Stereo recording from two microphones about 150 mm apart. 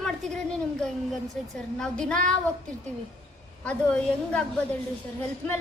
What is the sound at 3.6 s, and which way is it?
A woman's voice, 5° left (ahead or behind).